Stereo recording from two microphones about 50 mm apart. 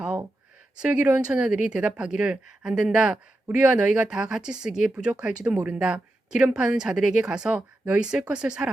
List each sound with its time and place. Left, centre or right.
0.8 s a woman's voice: right